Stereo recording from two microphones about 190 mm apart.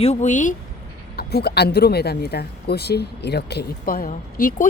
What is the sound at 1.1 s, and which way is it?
Speech, 55° left (ahead or behind).